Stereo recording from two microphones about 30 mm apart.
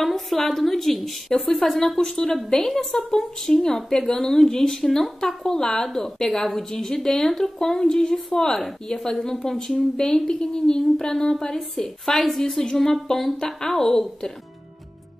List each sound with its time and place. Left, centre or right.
0.0 s a woman's voice: centre
2.8 s a woman's voice: centre